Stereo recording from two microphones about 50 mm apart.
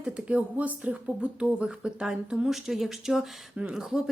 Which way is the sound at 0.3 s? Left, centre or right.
Right.